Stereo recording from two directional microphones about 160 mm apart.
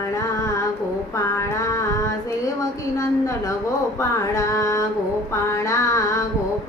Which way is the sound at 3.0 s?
20° left (ahead or behind).